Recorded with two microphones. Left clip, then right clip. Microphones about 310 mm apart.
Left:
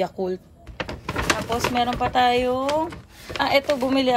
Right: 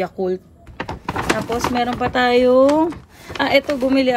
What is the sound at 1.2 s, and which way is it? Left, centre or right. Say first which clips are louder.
Speech: right 3 dB; centre.